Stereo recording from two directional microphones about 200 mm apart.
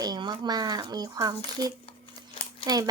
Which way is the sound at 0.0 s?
20° right (ahead or behind).